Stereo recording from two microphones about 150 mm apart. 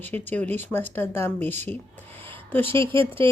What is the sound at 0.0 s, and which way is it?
Speech, 10° left (ahead or behind).